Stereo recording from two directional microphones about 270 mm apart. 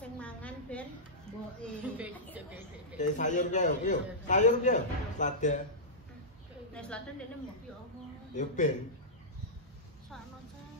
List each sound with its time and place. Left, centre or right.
0.2 s a sound: centre
1.6 s speech: centre
3.0 s a man's voice: left
6.7 s a woman's voice: centre
8.4 s a man's voice: left